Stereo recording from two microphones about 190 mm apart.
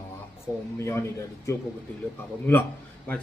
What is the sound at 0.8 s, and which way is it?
Speech, 15° left (ahead or behind).